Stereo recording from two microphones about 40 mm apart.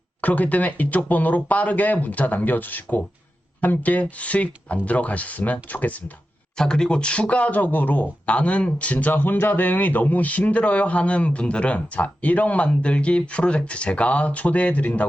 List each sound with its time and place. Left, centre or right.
0.2 s a man's voice: left
6.6 s a man's voice: centre; by 8.1 s left
8.3 s a man's voice: left